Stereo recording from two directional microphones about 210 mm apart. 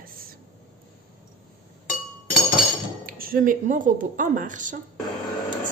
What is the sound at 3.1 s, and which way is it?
Speech, 40° right (ahead or behind).